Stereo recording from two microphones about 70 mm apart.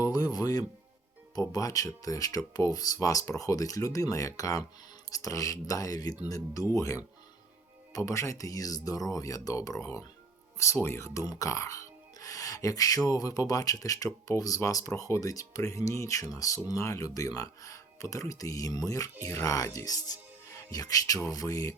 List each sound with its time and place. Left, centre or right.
0.0 s speech: left
10.8 s speech: left